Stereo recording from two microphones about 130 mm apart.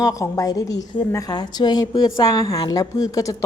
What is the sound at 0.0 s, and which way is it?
A woman's voice, 25° left (ahead or behind).